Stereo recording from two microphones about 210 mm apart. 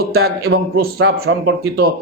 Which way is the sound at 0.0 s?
50° right (ahead or behind).